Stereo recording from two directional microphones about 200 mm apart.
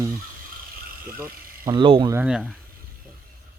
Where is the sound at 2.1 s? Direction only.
5° right (ahead or behind).